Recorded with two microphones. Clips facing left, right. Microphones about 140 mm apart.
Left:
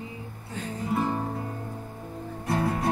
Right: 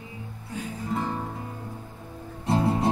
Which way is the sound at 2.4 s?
25° right (ahead or behind).